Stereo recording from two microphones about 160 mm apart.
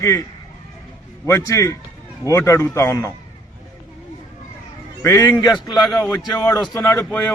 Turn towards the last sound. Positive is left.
turn(degrees=10)  # may be behind; listen again after turning